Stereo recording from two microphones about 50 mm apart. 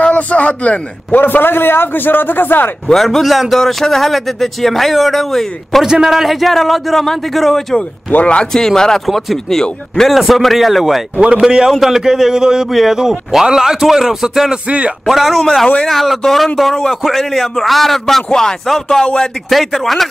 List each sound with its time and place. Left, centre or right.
0.0 s a man's voice: left
1.2 s a man's voice: left
2.9 s speech: centre
5.9 s speech: centre
8.1 s a man's voice: left
8.5 s speech: centre
11.1 s speech: right
11.4 s a man's voice: centre
14.7 s speech: right
15.0 s speech: centre
19.5 s speech: centre